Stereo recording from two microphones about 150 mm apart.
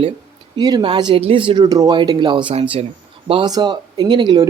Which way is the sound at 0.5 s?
25° right (ahead or behind).